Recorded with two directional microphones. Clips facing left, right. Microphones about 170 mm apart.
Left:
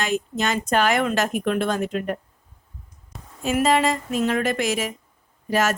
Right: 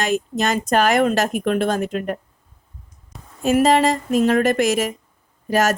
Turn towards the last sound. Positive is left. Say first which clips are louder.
# right 3 dB
turn(degrees=-40)  # may be behind; listen again after turning